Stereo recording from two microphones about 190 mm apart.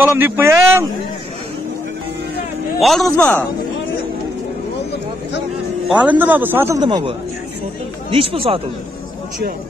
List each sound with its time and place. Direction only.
0.0 s a man's voice: 10° right (ahead or behind)
2.8 s a man's voice: centre (ahead or behind)
5.9 s a man's voice: 10° right (ahead or behind)
6.8 s speech: 25° right (ahead or behind)